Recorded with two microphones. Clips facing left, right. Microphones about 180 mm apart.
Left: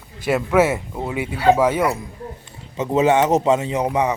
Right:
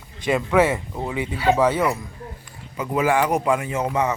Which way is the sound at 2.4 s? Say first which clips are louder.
Left 4 dB; 25° left (ahead or behind).